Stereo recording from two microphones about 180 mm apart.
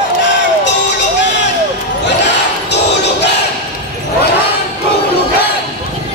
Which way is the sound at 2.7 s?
70° left (ahead or behind).